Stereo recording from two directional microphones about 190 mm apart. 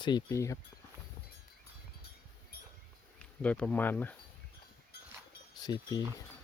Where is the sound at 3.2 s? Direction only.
5° left (ahead or behind).